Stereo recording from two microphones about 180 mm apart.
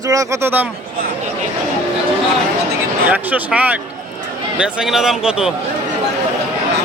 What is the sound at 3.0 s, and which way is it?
A man's voice, 10° right (ahead or behind).